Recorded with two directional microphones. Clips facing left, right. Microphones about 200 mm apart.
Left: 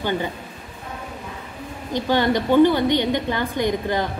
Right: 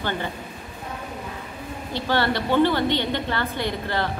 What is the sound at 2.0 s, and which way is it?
A woman's voice, 15° left (ahead or behind).